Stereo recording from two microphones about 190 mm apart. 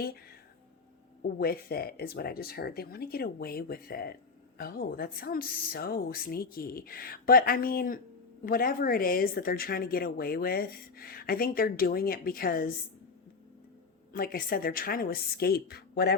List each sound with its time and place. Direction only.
1.4 s a woman's voice: 55° left (ahead or behind)
14.1 s a woman's voice: 50° left (ahead or behind)